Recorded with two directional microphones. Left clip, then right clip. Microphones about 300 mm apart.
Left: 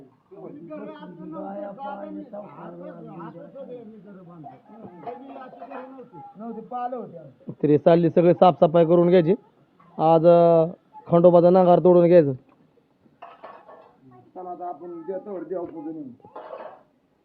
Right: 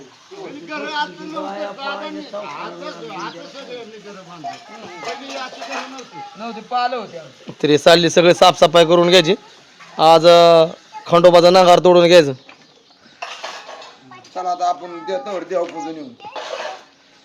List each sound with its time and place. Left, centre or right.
0.7 s speech: centre
6.4 s speech: centre
7.6 s speech: centre
14.6 s speech: right